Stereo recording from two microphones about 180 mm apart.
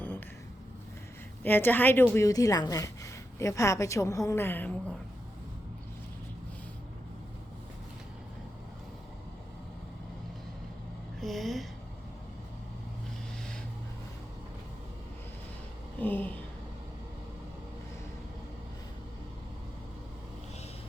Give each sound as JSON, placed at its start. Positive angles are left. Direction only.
{"t": 1.5, "sound": "a woman's voice", "side_deg": 10}
{"t": 11.2, "sound": "speech", "side_deg": 0}
{"t": 16.0, "sound": "a sound", "side_deg": 10}